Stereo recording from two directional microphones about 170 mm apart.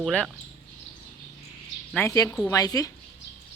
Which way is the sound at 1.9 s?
15° left (ahead or behind).